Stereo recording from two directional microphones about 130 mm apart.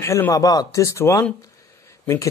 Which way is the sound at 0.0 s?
20° left (ahead or behind).